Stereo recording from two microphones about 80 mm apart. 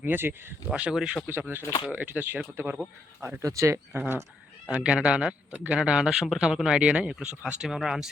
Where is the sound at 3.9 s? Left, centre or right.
Right; by 8.1 s centre.